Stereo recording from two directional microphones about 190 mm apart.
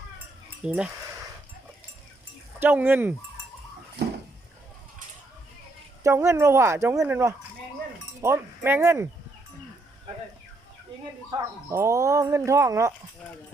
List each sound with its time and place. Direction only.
0.6 s speech: 5° right (ahead or behind)
2.6 s speech: 10° right (ahead or behind)
4.0 s a sound: 60° right (ahead or behind)
6.0 s speech: 15° right (ahead or behind)
11.3 s speech: 15° right (ahead or behind)